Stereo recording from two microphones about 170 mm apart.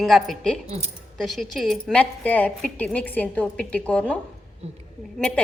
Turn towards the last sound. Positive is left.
turn(degrees=5)  # may be behind; listen again after turning